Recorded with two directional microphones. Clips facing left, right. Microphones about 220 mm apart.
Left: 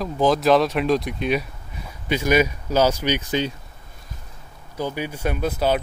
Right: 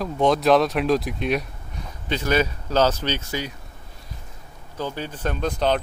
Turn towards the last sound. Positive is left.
turn(degrees=5)  # may be behind; listen again after turning